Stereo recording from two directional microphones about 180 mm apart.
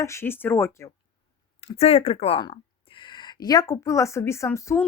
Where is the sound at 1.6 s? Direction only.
35° left (ahead or behind).